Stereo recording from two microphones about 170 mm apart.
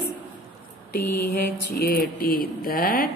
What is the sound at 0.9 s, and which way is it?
Mantra, 65° left (ahead or behind).